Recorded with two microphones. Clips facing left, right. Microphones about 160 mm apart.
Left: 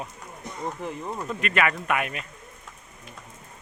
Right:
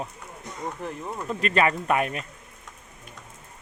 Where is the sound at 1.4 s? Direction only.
30° right (ahead or behind).